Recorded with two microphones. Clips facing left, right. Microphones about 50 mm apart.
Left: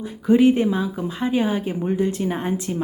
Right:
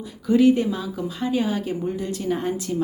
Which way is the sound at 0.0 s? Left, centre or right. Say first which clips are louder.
Left 2 dB; left.